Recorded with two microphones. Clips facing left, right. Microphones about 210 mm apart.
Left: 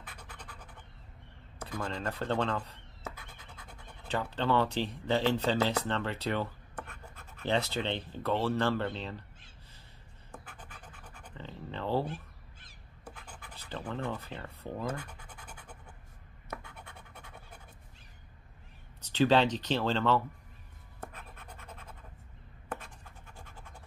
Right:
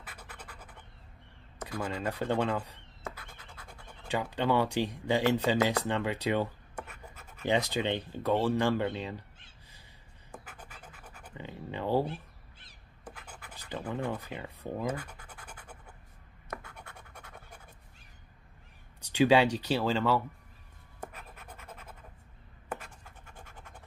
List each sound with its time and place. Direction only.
0.1 s scratch: 5° right (ahead or behind)
1.7 s speech: 10° right (ahead or behind)
10.3 s scratch: 10° right (ahead or behind)
13.1 s scratch: 10° right (ahead or behind)
16.6 s scratch: 5° left (ahead or behind)
18.9 s speech: 10° right (ahead or behind)
23.3 s scratch: 20° right (ahead or behind)